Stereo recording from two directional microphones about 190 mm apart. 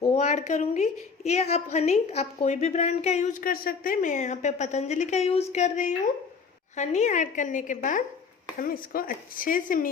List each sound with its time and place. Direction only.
0.1 s a woman's voice: 35° left (ahead or behind)